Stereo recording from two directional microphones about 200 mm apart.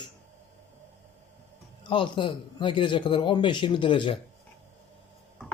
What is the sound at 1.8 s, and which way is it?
Speech, 25° left (ahead or behind).